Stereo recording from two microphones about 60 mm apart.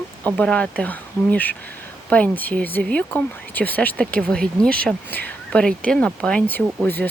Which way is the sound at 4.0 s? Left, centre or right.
Centre.